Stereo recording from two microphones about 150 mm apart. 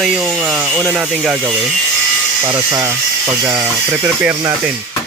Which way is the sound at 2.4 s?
15° right (ahead or behind).